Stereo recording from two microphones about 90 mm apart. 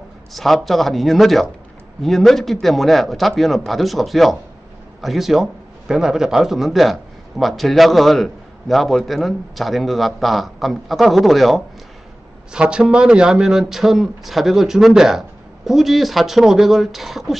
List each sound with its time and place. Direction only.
0.3 s a man's voice: centre (ahead or behind)